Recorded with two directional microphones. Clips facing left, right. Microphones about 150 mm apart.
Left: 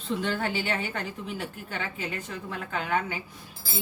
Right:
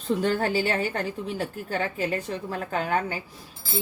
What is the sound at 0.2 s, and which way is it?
A woman's voice, 40° right (ahead or behind).